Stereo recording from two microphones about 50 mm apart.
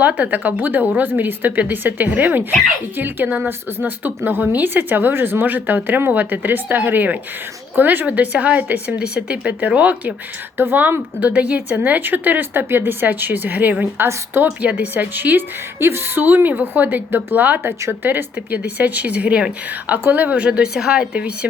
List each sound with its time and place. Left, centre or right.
0.0 s speech: right
8.9 s a woman's voice: right
9.5 s speech: right
10.6 s speech: right
11.3 s a woman's voice: right
11.9 s speech: right
14.1 s speech: right
14.6 s a woman's voice: right
15.1 s speech: right
15.8 s speech: right
17.6 s speech: right
19.9 s speech: right
20.3 s a woman's voice: right